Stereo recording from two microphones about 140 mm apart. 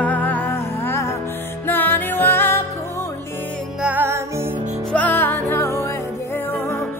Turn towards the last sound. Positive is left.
turn(degrees=15)  # may be behind; listen again after turning